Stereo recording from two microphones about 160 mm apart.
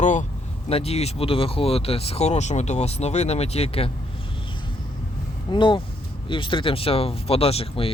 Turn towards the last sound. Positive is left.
turn(degrees=35)  # may be behind; listen again after turning